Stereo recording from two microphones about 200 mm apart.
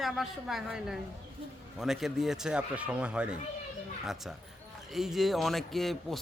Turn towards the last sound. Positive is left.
turn(degrees=0)  # may be behind; listen again after turning